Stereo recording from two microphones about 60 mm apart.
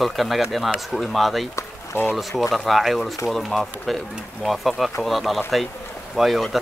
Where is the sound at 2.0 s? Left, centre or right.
Left.